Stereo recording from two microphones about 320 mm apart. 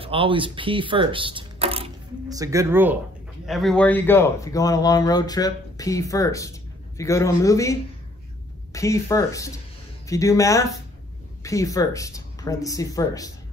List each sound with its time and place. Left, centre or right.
0.0 s speech: centre
8.7 s speech: centre